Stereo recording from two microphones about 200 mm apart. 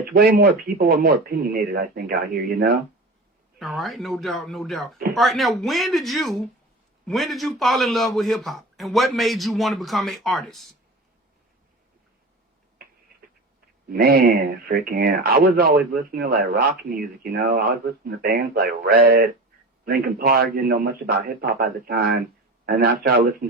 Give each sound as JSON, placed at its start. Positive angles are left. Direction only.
{"t": 0.2, "sound": "speech", "side_deg": -45}
{"t": 3.6, "sound": "a man's voice", "side_deg": 0}
{"t": 13.9, "sound": "speech", "side_deg": -50}